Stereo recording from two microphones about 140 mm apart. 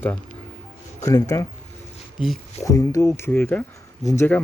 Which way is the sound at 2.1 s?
Centre (ahead or behind).